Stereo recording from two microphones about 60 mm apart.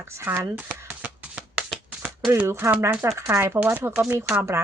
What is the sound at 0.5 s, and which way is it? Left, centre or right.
Shuffling cards, right.